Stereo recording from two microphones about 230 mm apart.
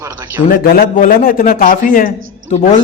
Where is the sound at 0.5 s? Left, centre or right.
Left.